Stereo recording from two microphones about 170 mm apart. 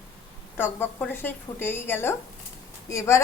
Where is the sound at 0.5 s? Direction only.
10° left (ahead or behind).